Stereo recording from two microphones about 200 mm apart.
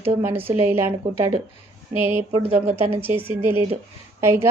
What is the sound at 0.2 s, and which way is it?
A woman's voice, 10° right (ahead or behind).